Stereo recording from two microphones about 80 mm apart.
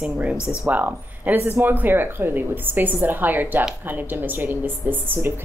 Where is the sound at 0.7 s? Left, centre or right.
Right.